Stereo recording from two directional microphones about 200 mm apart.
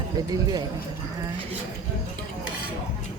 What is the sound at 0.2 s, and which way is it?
Speech, 20° right (ahead or behind).